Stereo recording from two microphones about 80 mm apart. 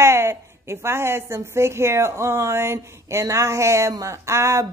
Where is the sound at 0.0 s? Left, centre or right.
Right.